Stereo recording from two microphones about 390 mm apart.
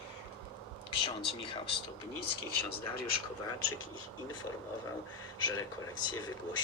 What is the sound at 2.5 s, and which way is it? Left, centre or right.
Speech, left.